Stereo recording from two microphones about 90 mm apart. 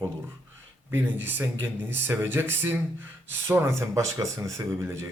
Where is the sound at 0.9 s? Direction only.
25° right (ahead or behind).